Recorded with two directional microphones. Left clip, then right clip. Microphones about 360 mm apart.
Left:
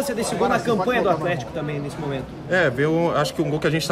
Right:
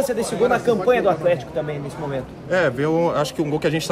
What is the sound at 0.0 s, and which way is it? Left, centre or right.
Speech, centre.